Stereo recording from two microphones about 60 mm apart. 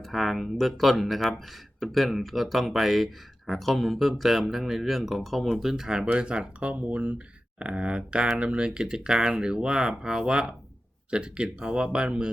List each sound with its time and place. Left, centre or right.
0.0 s speech: centre